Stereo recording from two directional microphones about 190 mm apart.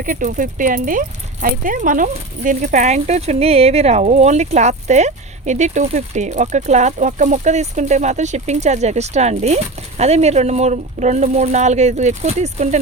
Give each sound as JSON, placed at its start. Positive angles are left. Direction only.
{"t": 0.0, "sound": "speech", "side_deg": -45}